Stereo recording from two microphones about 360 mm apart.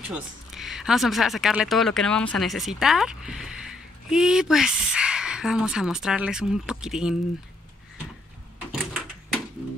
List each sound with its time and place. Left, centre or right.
0.1 s speech: centre
8.7 s door: centre